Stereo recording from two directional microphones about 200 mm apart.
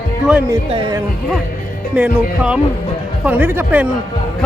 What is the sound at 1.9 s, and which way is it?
Speech, 5° right (ahead or behind).